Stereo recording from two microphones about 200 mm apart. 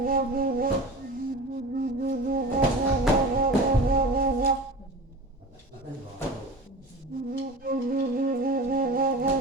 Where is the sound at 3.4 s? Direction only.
45° right (ahead or behind).